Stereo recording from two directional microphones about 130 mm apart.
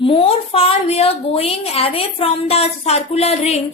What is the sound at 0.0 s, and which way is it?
A woman's voice, 45° left (ahead or behind).